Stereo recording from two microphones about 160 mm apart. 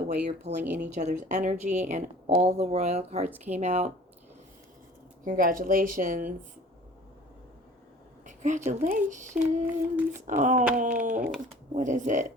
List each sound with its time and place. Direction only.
0.6 s humming: 10° right (ahead or behind)
0.9 s a woman's voice: 50° right (ahead or behind)
3.2 s humming: 10° right (ahead or behind)
3.6 s a woman's voice: 45° right (ahead or behind)
5.2 s speech: 60° right (ahead or behind)
8.3 s a woman's voice: 50° right (ahead or behind)
9.4 s humming: 10° right (ahead or behind)
10.2 s a woman's voice: 50° right (ahead or behind)